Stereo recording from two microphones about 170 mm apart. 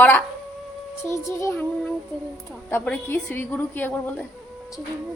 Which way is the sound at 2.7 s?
10° left (ahead or behind).